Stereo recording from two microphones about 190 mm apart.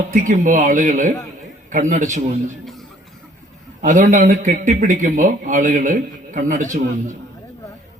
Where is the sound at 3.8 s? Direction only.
40° right (ahead or behind).